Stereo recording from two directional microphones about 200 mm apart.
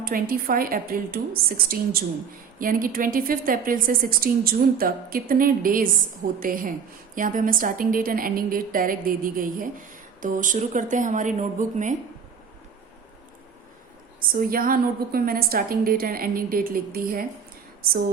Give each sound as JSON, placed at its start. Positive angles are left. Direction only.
{"t": 0.0, "sound": "a woman's voice", "side_deg": -45}
{"t": 14.2, "sound": "a woman's voice", "side_deg": -45}